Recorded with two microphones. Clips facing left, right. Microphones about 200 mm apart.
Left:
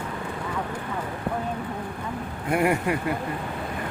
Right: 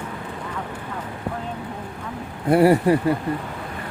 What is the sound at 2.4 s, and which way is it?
Speech, 35° right (ahead or behind).